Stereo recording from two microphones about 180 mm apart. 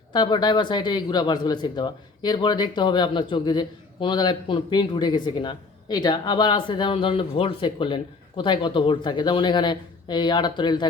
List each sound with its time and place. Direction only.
0.1 s speech: 25° left (ahead or behind)